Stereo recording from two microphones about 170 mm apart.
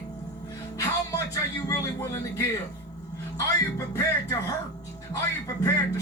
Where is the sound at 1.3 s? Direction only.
20° left (ahead or behind).